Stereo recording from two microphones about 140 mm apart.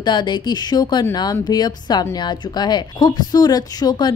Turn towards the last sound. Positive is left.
turn(degrees=30)  # may be behind; listen again after turning